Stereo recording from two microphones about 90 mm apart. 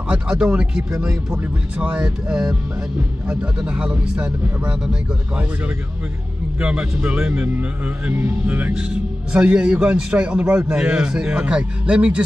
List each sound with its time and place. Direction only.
0.1 s a man's voice: 10° right (ahead or behind)
6.6 s a man's voice: 15° right (ahead or behind)